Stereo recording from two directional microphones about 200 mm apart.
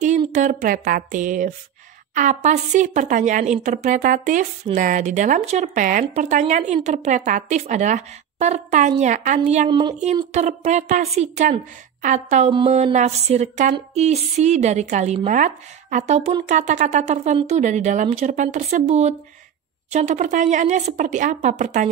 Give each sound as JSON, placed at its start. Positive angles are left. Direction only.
{"t": 0.3, "sound": "speech", "side_deg": -40}
{"t": 9.7, "sound": "speech", "side_deg": -25}
{"t": 10.3, "sound": "speech", "side_deg": -35}